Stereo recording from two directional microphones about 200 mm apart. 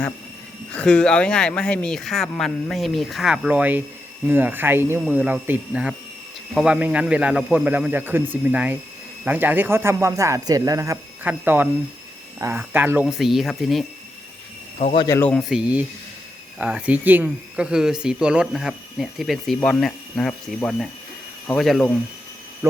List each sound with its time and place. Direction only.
0.7 s a man's voice: 5° left (ahead or behind)
14.8 s speech: 35° left (ahead or behind)
15.0 s speech: 15° left (ahead or behind)
15.3 s speech: centre (ahead or behind)
22.6 s a man's voice: 10° right (ahead or behind)